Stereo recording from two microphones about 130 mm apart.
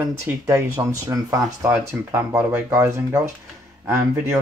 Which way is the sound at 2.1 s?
15° right (ahead or behind).